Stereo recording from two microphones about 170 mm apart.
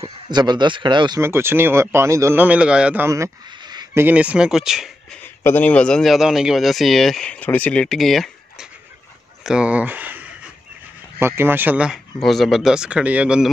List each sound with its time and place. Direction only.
0.0 s speech: 25° right (ahead or behind)
1.2 s speech: 15° right (ahead or behind)
4.0 s speech: 10° right (ahead or behind)
5.2 s a man's voice: 10° left (ahead or behind); by 13.5 s 5° right (ahead or behind)